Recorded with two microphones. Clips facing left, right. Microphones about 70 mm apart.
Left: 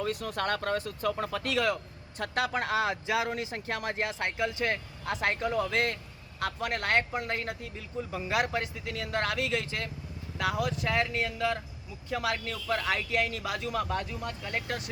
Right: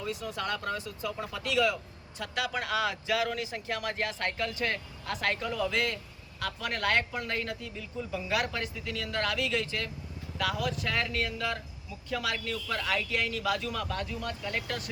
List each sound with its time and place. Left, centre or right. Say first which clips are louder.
0.0 s speech: left 3 dB; left